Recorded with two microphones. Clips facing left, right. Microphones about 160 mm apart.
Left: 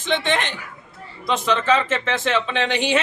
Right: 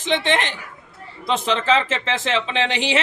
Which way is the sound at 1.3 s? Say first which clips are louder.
Even; 30° right (ahead or behind).